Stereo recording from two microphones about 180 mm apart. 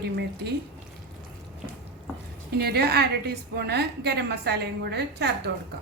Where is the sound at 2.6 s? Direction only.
60° right (ahead or behind).